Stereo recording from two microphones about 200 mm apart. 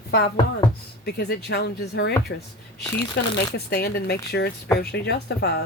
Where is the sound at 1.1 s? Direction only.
55° left (ahead or behind).